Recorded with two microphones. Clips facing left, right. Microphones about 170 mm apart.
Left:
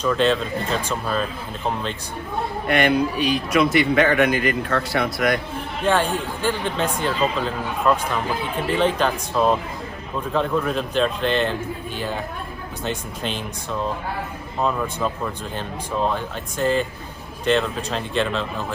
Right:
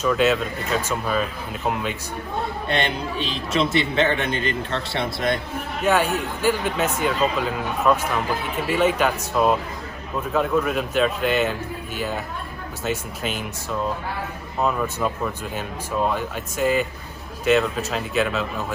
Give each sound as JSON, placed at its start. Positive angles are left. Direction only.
{"t": 0.0, "sound": "speech", "side_deg": -5}
{"t": 2.6, "sound": "a man's voice", "side_deg": -25}
{"t": 5.8, "sound": "speech", "side_deg": -5}